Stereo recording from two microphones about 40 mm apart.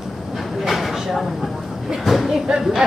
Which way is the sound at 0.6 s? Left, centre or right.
Centre.